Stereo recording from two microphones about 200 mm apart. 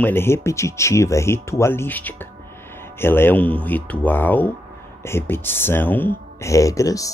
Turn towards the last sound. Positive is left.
turn(degrees=15)  # may be behind; listen again after turning